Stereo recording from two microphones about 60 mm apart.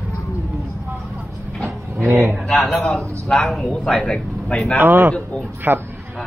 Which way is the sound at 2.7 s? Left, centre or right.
Centre.